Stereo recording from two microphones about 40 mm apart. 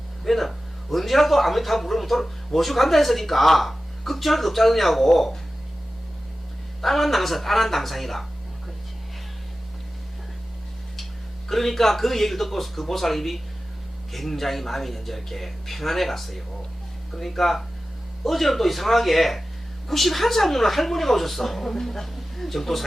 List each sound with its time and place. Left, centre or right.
0.3 s speech: centre
6.8 s speech: centre
11.4 s speech: centre